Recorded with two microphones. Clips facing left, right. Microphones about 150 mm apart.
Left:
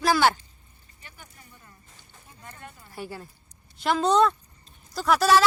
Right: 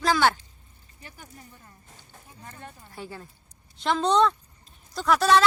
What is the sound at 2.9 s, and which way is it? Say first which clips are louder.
Speech: left 4 dB; 10° left (ahead or behind).